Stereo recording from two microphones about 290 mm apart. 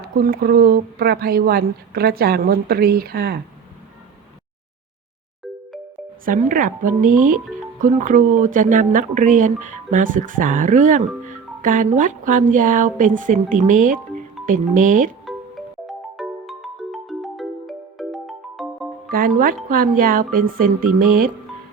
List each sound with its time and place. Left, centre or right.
0.0 s speech: right
6.2 s speech: right
15.3 s music: centre
19.0 s speech: right